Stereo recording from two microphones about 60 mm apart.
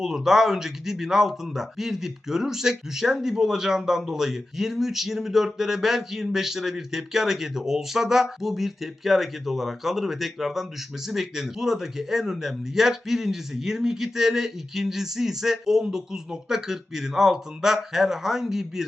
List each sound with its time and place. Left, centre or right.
0.0 s speech: centre